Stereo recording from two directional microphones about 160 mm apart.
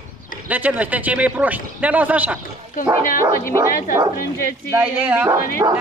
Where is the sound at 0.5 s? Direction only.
10° right (ahead or behind).